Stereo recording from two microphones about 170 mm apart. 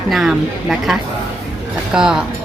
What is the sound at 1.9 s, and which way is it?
Speech, 5° right (ahead or behind).